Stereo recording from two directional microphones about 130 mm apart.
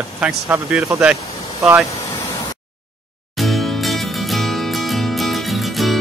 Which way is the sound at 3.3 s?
Centre (ahead or behind).